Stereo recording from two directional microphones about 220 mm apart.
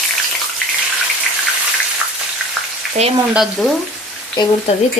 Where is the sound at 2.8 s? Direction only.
Centre (ahead or behind).